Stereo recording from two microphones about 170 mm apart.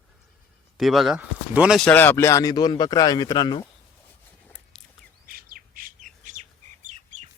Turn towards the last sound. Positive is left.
turn(degrees=-45)  # may be behind; listen again after turning